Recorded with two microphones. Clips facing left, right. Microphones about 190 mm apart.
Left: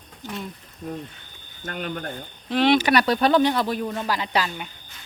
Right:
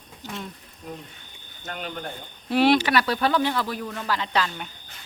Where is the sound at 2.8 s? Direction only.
20° left (ahead or behind).